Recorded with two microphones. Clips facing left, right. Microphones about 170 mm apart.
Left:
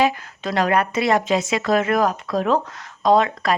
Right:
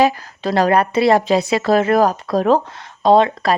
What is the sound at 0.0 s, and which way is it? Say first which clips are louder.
Speech: right 4 dB; 35° right (ahead or behind).